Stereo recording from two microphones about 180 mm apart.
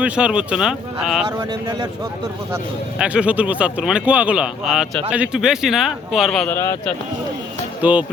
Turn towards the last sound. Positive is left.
turn(degrees=-10)  # may be behind; listen again after turning